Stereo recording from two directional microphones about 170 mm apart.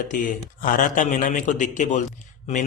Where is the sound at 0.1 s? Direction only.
50° left (ahead or behind).